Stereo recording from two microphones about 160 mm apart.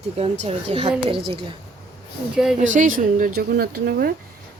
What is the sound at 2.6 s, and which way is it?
Speech, 50° right (ahead or behind).